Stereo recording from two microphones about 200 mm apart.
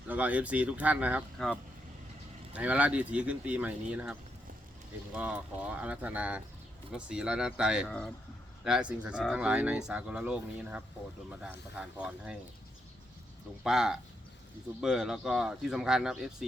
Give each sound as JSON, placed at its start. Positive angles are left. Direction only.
{"t": 0.1, "sound": "speech", "side_deg": -5}
{"t": 2.5, "sound": "speech", "side_deg": -5}
{"t": 13.7, "sound": "speech", "side_deg": -5}